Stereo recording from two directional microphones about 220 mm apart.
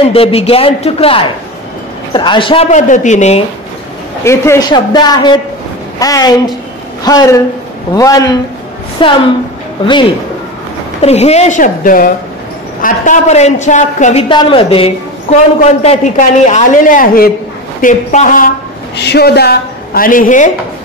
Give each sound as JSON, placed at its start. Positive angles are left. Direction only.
{"t": 0.0, "sound": "a man's voice", "side_deg": 25}
{"t": 4.2, "sound": "a man's voice", "side_deg": 10}
{"t": 11.0, "sound": "a man's voice", "side_deg": 30}
{"t": 19.0, "sound": "a man's voice", "side_deg": 45}